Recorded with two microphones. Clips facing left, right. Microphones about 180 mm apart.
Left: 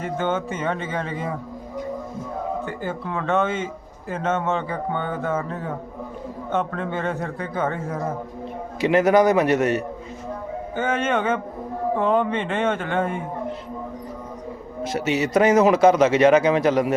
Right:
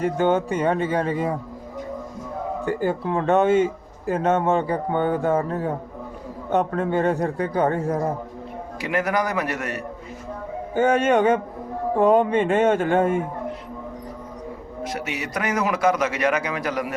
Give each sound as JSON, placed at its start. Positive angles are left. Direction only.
{"t": 0.0, "sound": "speech", "side_deg": -40}
{"t": 2.6, "sound": "speech", "side_deg": -40}
{"t": 8.8, "sound": "a man's voice", "side_deg": 25}
{"t": 10.8, "sound": "speech", "side_deg": -40}
{"t": 14.8, "sound": "a man's voice", "side_deg": 25}